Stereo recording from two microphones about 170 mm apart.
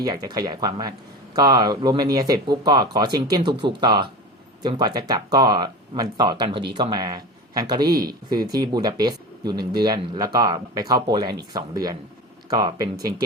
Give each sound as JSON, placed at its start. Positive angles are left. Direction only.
{"t": 0.1, "sound": "speech", "side_deg": -25}